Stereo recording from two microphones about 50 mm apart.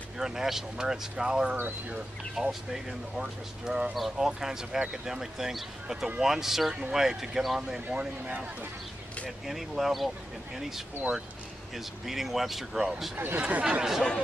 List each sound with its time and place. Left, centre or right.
0.2 s speech: centre
3.9 s speech: centre
9.5 s speech: centre
11.7 s speech: centre
13.1 s speech: right
13.5 s speech: right